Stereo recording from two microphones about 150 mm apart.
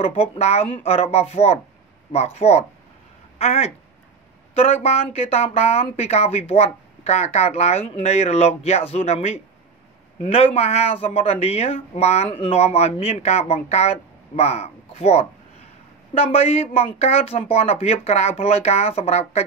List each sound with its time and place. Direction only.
0.0 s speech: 40° left (ahead or behind)